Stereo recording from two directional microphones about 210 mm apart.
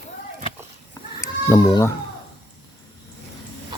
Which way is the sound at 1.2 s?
15° left (ahead or behind).